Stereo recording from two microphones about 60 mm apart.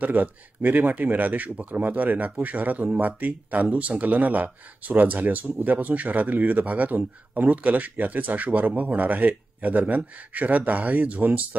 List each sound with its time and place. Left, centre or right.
0.0 s speech: right